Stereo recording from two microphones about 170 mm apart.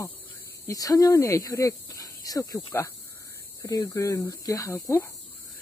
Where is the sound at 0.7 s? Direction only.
20° left (ahead or behind).